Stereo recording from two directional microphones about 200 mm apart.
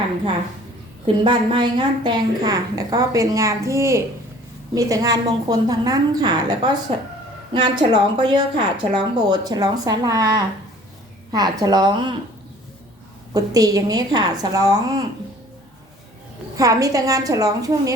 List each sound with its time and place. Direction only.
1.0 s a woman's voice: 20° right (ahead or behind)
13.3 s speech: 20° right (ahead or behind)
16.6 s a woman's voice: 15° right (ahead or behind)